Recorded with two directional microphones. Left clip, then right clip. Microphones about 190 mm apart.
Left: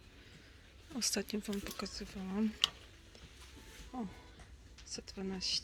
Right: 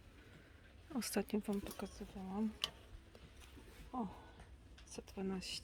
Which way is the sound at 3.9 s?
5° left (ahead or behind).